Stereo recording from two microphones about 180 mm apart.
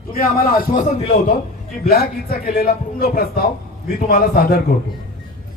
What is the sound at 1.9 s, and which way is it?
A man's voice, 60° left (ahead or behind).